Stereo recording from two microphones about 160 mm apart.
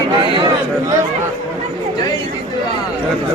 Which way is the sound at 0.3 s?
25° right (ahead or behind).